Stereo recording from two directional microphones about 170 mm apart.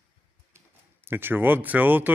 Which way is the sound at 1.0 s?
10° right (ahead or behind).